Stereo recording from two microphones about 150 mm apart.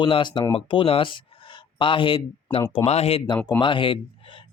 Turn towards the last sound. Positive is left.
turn(degrees=35)  # may be behind; listen again after turning